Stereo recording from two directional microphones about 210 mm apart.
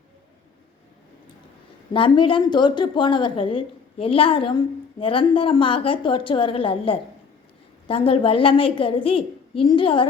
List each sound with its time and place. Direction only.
1.9 s a woman's voice: 25° left (ahead or behind)